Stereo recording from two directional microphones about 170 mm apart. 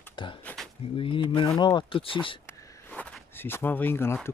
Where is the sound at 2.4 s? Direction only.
10° left (ahead or behind).